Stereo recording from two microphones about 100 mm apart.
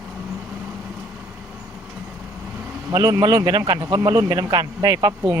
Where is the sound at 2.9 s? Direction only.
35° right (ahead or behind).